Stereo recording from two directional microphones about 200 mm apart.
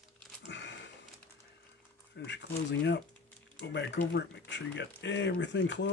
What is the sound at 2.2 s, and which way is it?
Speech, 60° left (ahead or behind).